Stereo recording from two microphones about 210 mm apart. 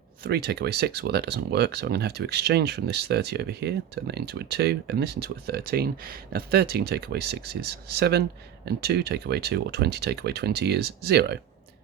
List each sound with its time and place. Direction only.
0.2 s speech: 50° right (ahead or behind)